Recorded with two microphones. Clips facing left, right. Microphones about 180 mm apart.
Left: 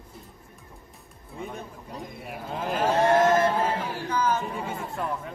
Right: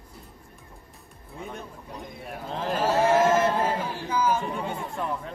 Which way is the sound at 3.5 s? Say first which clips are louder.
Even; 10° right (ahead or behind).